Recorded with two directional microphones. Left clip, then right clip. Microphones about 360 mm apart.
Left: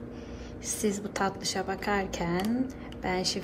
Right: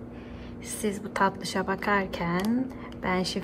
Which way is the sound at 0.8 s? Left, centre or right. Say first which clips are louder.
Right 4 dB; centre.